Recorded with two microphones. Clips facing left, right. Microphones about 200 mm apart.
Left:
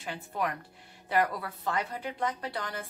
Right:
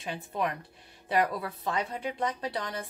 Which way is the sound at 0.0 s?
20° right (ahead or behind).